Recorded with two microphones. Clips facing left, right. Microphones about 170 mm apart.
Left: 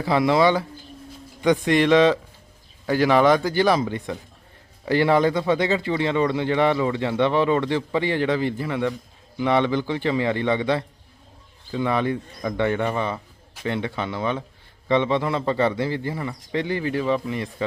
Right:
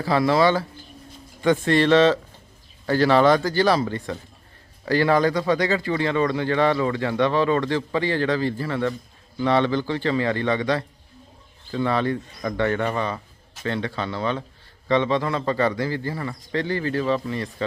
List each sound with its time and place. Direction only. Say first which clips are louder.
0.0 s a man's voice: even; 20° left (ahead or behind)